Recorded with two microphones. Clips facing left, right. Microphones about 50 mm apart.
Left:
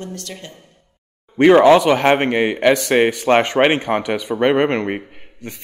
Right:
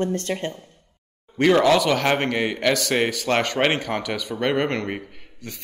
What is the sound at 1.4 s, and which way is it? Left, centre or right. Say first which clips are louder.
A man's voice: left 7 dB; left.